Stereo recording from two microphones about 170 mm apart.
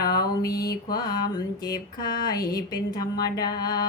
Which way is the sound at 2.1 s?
65° left (ahead or behind).